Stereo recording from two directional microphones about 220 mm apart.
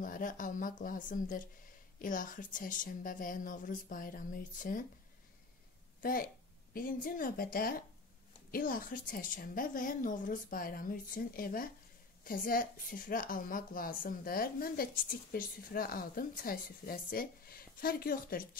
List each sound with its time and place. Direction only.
0.0 s a woman's voice: 35° left (ahead or behind)
6.7 s a woman's voice: 40° left (ahead or behind)